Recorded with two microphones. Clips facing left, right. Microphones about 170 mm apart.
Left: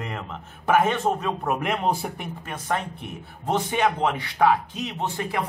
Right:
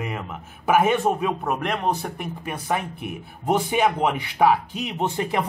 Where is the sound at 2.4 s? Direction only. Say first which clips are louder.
Right 1 dB; 10° right (ahead or behind).